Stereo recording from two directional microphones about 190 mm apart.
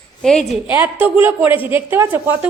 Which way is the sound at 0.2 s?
Centre (ahead or behind).